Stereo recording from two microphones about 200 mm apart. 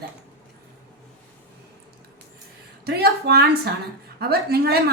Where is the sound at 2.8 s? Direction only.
55° right (ahead or behind).